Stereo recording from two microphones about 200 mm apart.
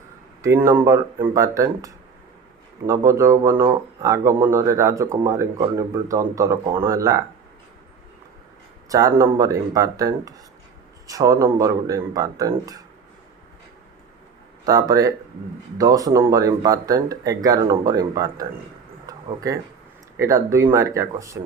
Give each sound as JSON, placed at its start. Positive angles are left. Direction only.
{"t": 0.4, "sound": "speech", "side_deg": -15}
{"t": 8.9, "sound": "speech", "side_deg": -15}
{"t": 14.6, "sound": "speech", "side_deg": -20}
{"t": 19.0, "sound": "a sound", "side_deg": -15}
{"t": 20.1, "sound": "speech", "side_deg": -15}